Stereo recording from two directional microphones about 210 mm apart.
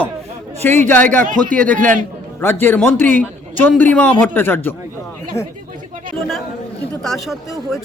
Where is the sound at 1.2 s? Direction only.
40° right (ahead or behind).